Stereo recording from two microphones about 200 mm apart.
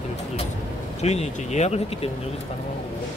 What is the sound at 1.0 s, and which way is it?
Speech, 35° left (ahead or behind).